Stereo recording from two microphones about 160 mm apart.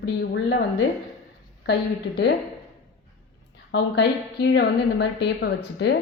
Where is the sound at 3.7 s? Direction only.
90° left.